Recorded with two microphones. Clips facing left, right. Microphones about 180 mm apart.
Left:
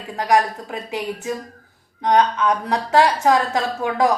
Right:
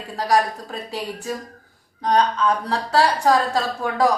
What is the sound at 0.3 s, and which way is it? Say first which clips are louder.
A man's voice: left 2 dB; 20° left (ahead or behind).